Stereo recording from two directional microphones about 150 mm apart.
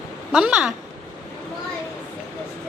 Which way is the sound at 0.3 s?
5° right (ahead or behind).